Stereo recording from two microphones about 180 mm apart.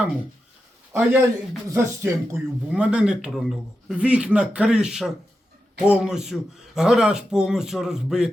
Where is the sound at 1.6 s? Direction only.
15° right (ahead or behind).